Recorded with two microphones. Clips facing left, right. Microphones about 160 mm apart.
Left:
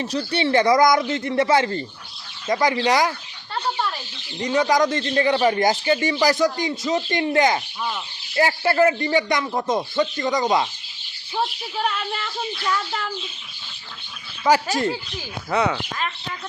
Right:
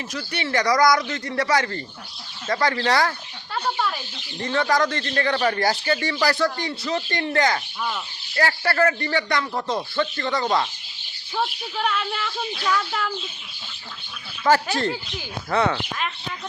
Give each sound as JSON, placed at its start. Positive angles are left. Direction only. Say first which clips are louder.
{"t": 0.0, "sound": "a man's voice", "louder": "left 7 dB", "side_deg": 30}
{"t": 3.5, "sound": "a sound", "louder": "even", "side_deg": 0}
{"t": 4.4, "sound": "a man's voice", "louder": "left 3 dB", "side_deg": 20}
{"t": 11.3, "sound": "speech", "louder": "left 1 dB", "side_deg": 0}
{"t": 14.5, "sound": "speech", "louder": "left 1 dB", "side_deg": 15}